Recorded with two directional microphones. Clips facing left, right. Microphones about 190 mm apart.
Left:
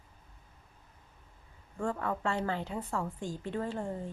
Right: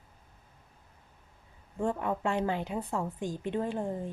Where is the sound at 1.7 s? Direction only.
20° right (ahead or behind).